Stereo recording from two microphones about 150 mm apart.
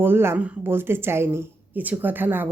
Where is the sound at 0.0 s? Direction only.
15° right (ahead or behind).